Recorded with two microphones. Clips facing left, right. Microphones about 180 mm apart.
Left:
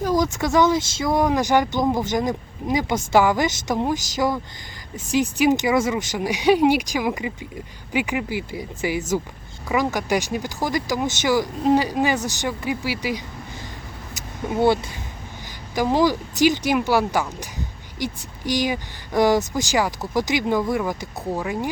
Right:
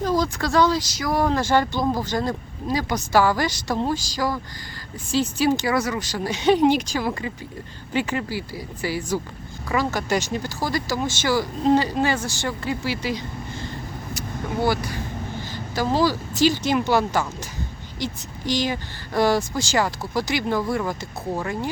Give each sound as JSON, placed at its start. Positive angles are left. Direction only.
{"t": 0.0, "sound": "a woman's voice", "side_deg": 15}
{"t": 14.6, "sound": "a woman's voice", "side_deg": 25}